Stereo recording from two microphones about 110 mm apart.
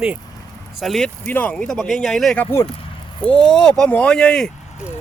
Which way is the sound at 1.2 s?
15° left (ahead or behind).